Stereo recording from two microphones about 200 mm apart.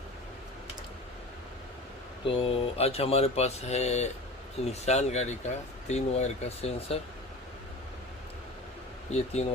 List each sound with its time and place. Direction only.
2.2 s speech: 25° left (ahead or behind)
9.1 s speech: 30° left (ahead or behind)